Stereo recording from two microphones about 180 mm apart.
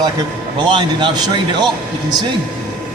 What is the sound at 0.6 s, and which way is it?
Speech, 25° right (ahead or behind).